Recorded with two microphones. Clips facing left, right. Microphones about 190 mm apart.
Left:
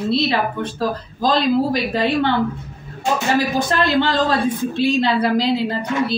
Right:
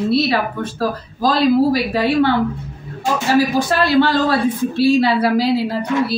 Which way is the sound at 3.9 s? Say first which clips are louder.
Right 5 dB; 10° right (ahead or behind).